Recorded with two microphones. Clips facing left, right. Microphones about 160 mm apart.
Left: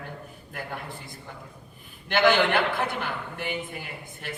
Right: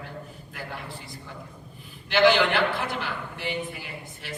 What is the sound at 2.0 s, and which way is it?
A man's voice, 55° left (ahead or behind).